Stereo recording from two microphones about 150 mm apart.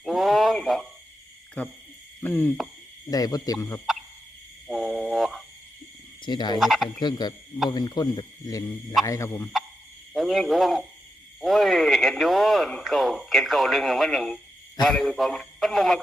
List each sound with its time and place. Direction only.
0.0 s a sound: centre (ahead or behind)
2.2 s speech: 10° left (ahead or behind)
3.1 s speech: 25° left (ahead or behind)
4.7 s a sound: centre (ahead or behind)
6.2 s frog: 30° left (ahead or behind)
6.6 s speech: centre (ahead or behind)
7.0 s speech: 30° left (ahead or behind)
10.2 s speech: centre (ahead or behind)